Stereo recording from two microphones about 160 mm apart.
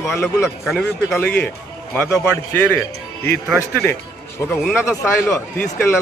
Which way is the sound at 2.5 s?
10° left (ahead or behind).